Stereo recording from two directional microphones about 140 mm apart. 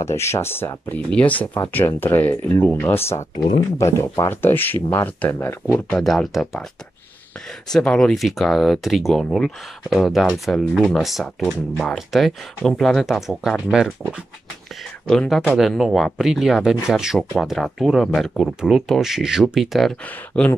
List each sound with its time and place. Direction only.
0.0 s speech: 20° left (ahead or behind)
5.9 s speech: 5° left (ahead or behind)
7.7 s speech: 5° left (ahead or behind)
15.0 s speech: centre (ahead or behind)